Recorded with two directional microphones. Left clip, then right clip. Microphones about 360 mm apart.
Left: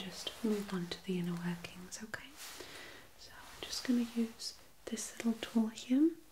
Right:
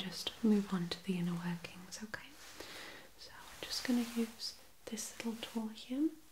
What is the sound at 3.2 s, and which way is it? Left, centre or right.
Whispering, centre.